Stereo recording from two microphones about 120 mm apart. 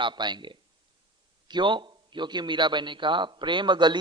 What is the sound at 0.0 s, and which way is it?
A man's voice, 40° right (ahead or behind).